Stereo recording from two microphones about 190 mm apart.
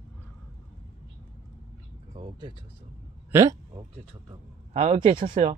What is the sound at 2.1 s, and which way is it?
Speech, 25° right (ahead or behind).